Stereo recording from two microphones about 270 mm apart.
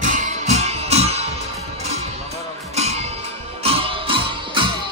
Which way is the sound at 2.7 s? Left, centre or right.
Right.